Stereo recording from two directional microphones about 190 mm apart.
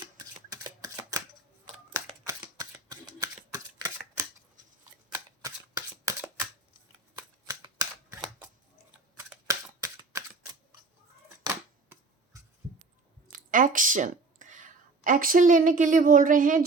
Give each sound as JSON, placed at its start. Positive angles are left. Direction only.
{"t": 0.0, "sound": "shuffling cards", "side_deg": -20}
{"t": 2.2, "sound": "shuffling cards", "side_deg": -15}
{"t": 5.1, "sound": "shuffling cards", "side_deg": -15}
{"t": 7.2, "sound": "shuffling cards", "side_deg": -20}
{"t": 9.1, "sound": "a sound", "side_deg": -15}
{"t": 12.3, "sound": "a sound", "side_deg": -15}
{"t": 13.3, "sound": "speech", "side_deg": -45}